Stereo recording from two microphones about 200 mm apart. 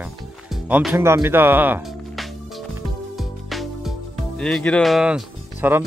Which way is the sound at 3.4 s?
Centre (ahead or behind).